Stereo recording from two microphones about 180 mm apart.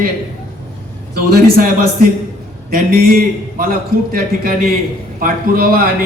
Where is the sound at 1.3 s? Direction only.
55° right (ahead or behind).